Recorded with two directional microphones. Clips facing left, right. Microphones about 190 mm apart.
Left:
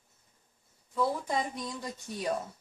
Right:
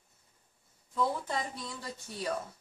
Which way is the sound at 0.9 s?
15° left (ahead or behind).